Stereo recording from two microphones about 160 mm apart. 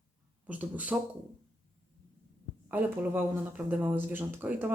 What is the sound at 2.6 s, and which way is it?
Speech, 10° right (ahead or behind).